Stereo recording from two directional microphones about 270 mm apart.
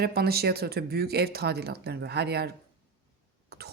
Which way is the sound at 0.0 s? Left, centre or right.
Right.